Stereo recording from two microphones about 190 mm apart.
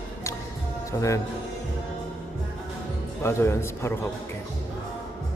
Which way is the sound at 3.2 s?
15° left (ahead or behind).